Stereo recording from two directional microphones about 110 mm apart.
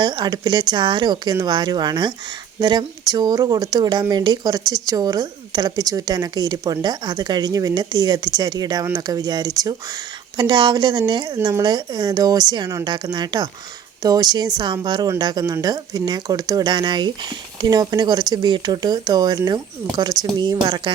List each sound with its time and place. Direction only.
0.0 s a woman's voice: 40° right (ahead or behind)